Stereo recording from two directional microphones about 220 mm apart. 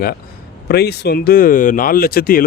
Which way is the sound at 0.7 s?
45° left (ahead or behind).